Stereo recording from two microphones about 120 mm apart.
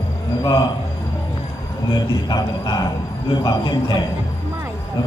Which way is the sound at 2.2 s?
35° left (ahead or behind).